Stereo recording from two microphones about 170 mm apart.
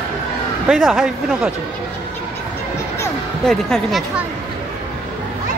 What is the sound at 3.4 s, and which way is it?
Speech, centre (ahead or behind).